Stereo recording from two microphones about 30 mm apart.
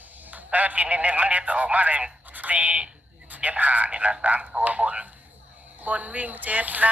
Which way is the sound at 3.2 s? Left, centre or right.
Right.